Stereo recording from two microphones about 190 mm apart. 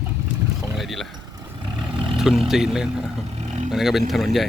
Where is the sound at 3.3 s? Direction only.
35° right (ahead or behind).